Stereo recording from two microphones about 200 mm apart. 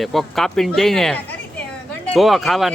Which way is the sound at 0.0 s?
Centre (ahead or behind).